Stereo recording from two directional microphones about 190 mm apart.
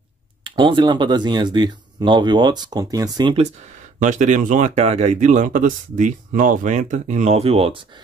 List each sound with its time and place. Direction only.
0.4 s speech: 25° right (ahead or behind)
4.0 s speech: 40° right (ahead or behind)